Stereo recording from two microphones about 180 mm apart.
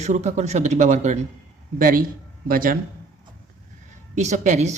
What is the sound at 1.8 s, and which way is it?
Speech, 50° right (ahead or behind).